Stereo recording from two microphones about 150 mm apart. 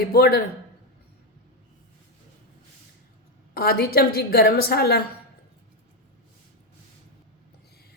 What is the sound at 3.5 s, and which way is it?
A woman's voice, 85° left.